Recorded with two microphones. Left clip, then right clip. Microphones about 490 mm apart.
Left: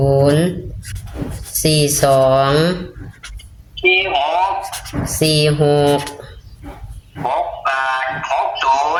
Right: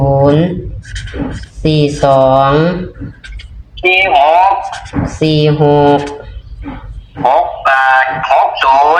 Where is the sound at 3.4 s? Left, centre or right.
Left.